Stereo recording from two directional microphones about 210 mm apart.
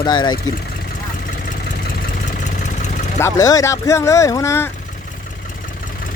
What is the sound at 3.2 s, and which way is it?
Speech, 15° left (ahead or behind).